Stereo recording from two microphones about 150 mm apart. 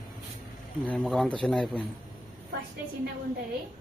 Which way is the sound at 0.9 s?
Centre (ahead or behind).